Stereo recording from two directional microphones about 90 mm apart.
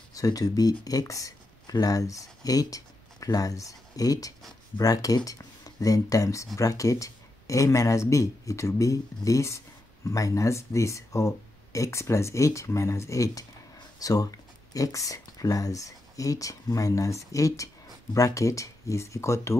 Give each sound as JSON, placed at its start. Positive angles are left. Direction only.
{"t": 0.1, "sound": "speech", "side_deg": 40}